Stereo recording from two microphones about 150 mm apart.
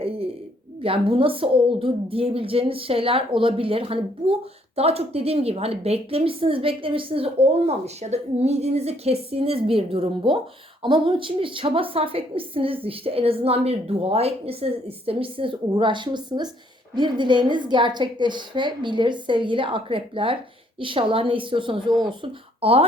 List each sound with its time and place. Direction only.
0.8 s a woman's voice: 40° right (ahead or behind)